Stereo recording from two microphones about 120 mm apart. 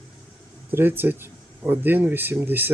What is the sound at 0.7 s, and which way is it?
Speech, 20° right (ahead or behind).